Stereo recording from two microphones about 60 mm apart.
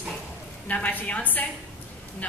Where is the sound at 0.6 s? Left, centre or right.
Left.